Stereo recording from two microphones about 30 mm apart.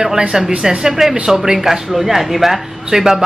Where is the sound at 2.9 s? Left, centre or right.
Centre.